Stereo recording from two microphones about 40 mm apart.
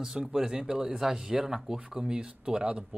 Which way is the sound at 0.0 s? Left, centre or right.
Centre.